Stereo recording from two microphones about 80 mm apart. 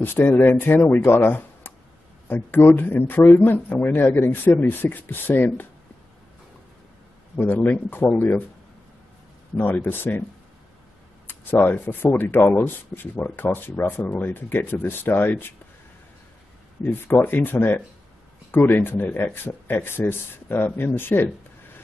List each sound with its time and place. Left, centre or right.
0.0 s speech: left
7.3 s speech: left
9.6 s speech: left
11.2 s speech: left
16.8 s speech: left